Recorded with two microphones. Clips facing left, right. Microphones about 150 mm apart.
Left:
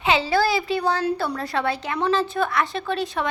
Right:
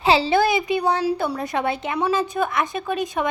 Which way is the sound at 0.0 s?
35° right (ahead or behind).